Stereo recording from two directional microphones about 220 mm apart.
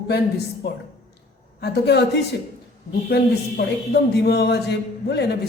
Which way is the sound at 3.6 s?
50° left (ahead or behind).